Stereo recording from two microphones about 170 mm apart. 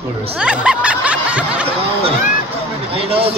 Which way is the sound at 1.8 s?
35° right (ahead or behind).